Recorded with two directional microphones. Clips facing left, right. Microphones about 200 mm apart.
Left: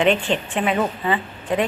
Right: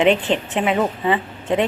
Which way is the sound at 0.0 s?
20° right (ahead or behind).